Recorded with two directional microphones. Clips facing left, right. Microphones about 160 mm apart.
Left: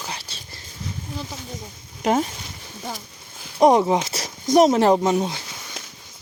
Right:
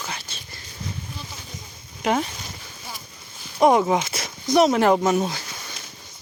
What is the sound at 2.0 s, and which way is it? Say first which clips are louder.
Speech: left 2 dB; 40° left (ahead or behind).